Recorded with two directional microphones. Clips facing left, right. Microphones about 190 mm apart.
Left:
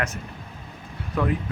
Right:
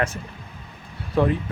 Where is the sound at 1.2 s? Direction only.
30° right (ahead or behind).